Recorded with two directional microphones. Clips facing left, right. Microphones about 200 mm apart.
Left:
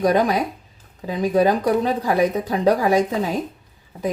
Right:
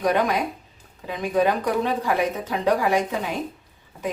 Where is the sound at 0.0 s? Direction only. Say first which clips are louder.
Left 4 dB; 35° left (ahead or behind).